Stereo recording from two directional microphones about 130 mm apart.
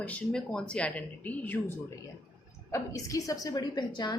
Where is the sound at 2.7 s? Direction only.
25° left (ahead or behind).